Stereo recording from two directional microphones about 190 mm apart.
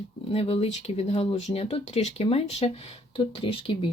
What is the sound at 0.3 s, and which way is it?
Speech, 30° left (ahead or behind).